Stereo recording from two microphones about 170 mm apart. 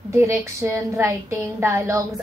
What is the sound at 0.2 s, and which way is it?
A woman's voice, 15° right (ahead or behind).